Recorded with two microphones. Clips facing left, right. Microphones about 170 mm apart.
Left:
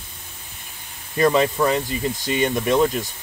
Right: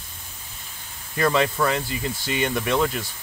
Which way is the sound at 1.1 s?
15° left (ahead or behind).